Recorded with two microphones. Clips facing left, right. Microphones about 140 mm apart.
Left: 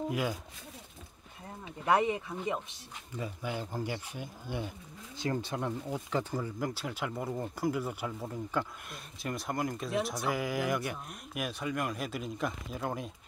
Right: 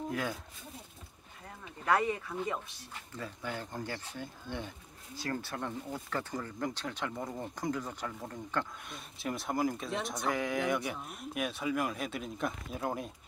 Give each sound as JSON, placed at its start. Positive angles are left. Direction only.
{"t": 0.1, "sound": "speech", "side_deg": 10}
{"t": 1.9, "sound": "speech", "side_deg": 20}